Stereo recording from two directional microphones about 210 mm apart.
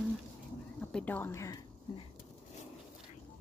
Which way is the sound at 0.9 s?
10° left (ahead or behind).